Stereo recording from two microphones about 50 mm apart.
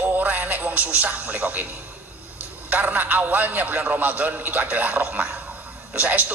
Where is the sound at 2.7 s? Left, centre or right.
Right.